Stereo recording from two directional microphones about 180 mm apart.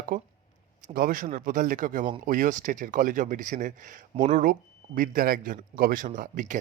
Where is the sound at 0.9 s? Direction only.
50° right (ahead or behind).